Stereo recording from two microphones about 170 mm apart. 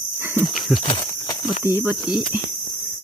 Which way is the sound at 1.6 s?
15° right (ahead or behind).